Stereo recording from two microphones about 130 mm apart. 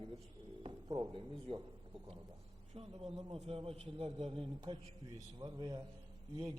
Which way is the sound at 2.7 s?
50° right (ahead or behind).